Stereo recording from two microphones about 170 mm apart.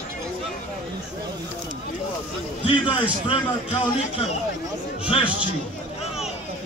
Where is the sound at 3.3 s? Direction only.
35° left (ahead or behind).